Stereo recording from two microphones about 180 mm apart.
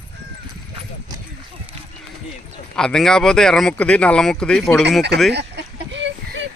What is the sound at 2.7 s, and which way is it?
Speech, 5° left (ahead or behind).